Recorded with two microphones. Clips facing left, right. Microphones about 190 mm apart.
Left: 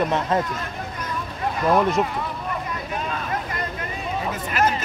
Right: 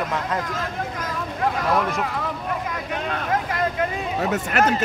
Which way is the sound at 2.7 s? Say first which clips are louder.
Right 1 dB; 70° right (ahead or behind).